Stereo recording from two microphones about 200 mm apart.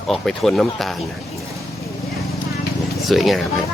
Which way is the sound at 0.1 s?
Centre (ahead or behind).